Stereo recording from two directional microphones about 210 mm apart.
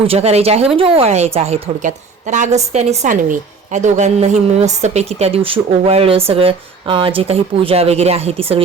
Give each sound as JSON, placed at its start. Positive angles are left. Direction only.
{"t": 0.0, "sound": "a woman's voice", "side_deg": -30}